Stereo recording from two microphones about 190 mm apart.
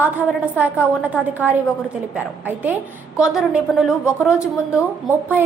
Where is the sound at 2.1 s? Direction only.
10° right (ahead or behind).